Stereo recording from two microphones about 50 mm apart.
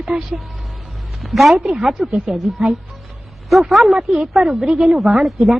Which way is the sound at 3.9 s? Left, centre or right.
Centre.